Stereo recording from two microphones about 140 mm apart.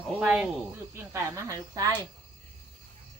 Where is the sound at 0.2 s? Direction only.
5° right (ahead or behind).